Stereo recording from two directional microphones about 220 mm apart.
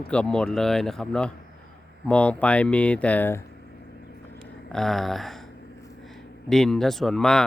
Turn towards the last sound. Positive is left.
turn(degrees=0)  # may be behind; listen again after turning